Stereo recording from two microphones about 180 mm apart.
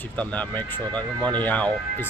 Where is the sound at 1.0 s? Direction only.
25° right (ahead or behind).